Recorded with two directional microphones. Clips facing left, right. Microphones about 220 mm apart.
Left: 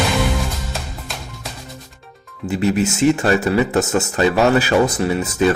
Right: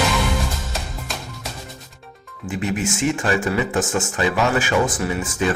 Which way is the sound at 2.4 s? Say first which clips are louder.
Left 6 dB; 40° left (ahead or behind).